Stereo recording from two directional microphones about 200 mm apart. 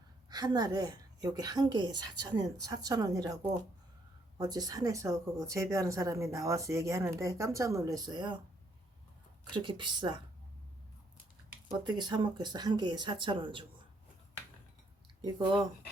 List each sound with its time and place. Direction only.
0.3 s a woman's voice: 20° right (ahead or behind)
9.6 s a woman's voice: 25° right (ahead or behind)
11.7 s a woman's voice: 20° right (ahead or behind)
15.2 s a woman's voice: 25° right (ahead or behind)